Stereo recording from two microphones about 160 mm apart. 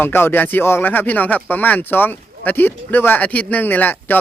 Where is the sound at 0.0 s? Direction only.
15° left (ahead or behind).